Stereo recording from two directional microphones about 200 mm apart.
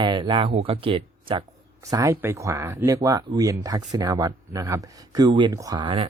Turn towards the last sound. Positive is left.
turn(degrees=-25)  # may be behind; listen again after turning